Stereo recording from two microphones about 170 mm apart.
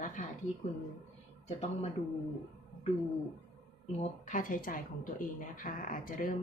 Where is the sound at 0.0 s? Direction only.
50° left (ahead or behind).